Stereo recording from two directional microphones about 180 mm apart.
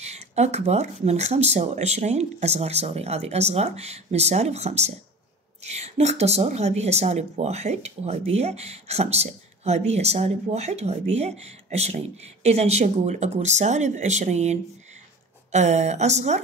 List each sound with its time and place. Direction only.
0.0 s a woman's voice: 40° right (ahead or behind)